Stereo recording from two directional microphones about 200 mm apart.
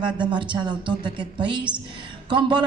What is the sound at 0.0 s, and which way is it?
A man's voice, 20° right (ahead or behind).